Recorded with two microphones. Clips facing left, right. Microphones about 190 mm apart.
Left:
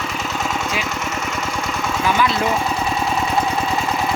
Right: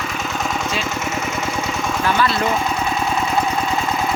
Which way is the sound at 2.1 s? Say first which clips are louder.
Even; 10° left (ahead or behind).